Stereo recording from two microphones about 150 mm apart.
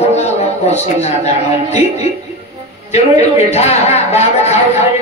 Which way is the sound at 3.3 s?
45° left (ahead or behind).